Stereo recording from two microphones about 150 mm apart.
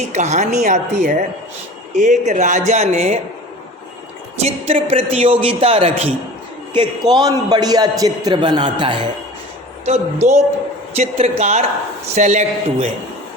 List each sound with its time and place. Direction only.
0.0 s speech: 50° right (ahead or behind)
4.4 s a man's voice: 40° right (ahead or behind)
6.7 s a man's voice: 30° right (ahead or behind)
9.8 s speech: 50° right (ahead or behind)